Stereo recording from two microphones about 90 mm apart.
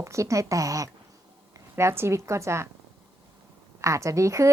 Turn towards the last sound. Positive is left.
turn(degrees=-35)  # may be behind; listen again after turning